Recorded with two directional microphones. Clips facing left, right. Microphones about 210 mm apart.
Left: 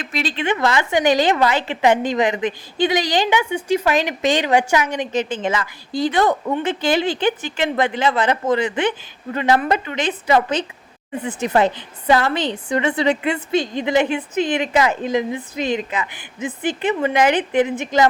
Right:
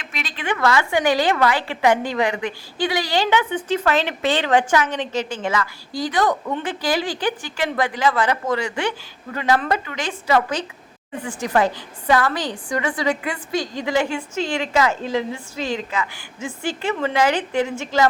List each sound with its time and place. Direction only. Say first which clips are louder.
0.0 s a woman's voice: left 7 dB; 30° left (ahead or behind)